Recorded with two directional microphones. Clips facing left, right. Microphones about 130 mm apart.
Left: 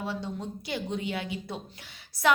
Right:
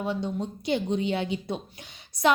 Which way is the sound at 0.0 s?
20° right (ahead or behind).